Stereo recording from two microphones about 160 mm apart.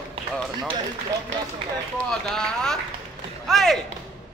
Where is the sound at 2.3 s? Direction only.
5° left (ahead or behind).